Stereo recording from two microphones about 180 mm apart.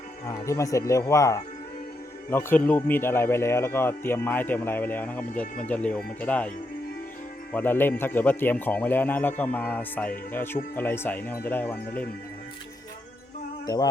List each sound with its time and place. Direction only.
0.3 s speech: 15° left (ahead or behind)
7.5 s speech: 10° left (ahead or behind)
13.7 s speech: 20° left (ahead or behind)